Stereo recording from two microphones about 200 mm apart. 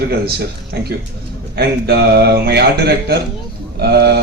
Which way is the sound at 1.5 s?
55° right (ahead or behind).